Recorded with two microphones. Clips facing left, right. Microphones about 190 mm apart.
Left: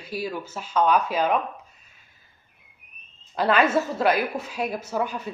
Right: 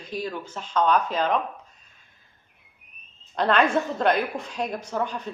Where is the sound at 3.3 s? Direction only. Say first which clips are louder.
Left 1 dB; 5° left (ahead or behind).